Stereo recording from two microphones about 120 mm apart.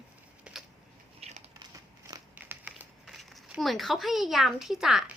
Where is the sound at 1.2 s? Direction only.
60° right (ahead or behind).